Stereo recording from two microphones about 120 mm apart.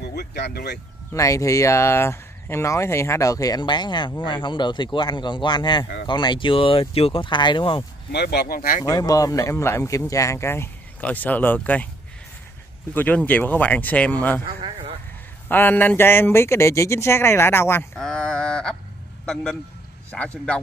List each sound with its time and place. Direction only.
1.1 s speech: 25° left (ahead or behind); by 7.8 s 40° left (ahead or behind)
8.8 s speech: 30° left (ahead or behind); by 11.9 s 15° left (ahead or behind)
12.9 s speech: 15° left (ahead or behind)
15.4 s speech: 15° left (ahead or behind)
17.9 s a sound: 5° left (ahead or behind)
19.2 s a man's voice: 5° left (ahead or behind)